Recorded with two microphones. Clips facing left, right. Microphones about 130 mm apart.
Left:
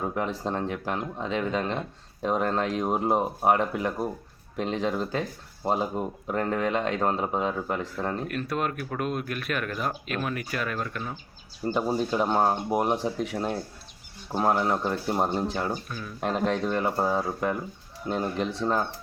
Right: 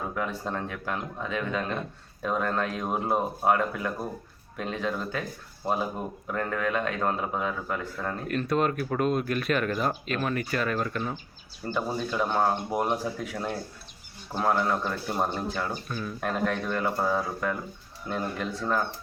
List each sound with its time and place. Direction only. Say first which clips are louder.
0.0 s speech: left 2 dB; 30° left (ahead or behind)
8.3 s speech: right 3 dB; 5° left (ahead or behind)
11.6 s speech: left 4 dB; 25° left (ahead or behind)
15.7 s speech: even; 5° left (ahead or behind)
16.2 s speech: left 3 dB; 25° left (ahead or behind)